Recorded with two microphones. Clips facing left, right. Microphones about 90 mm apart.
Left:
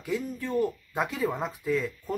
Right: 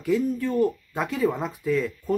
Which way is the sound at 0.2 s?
Centre (ahead or behind).